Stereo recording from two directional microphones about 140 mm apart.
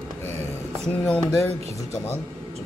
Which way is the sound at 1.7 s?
20° left (ahead or behind).